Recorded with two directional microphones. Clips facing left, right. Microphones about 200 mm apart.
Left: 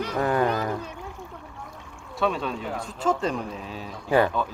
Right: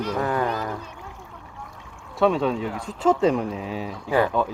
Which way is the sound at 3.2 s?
80° right.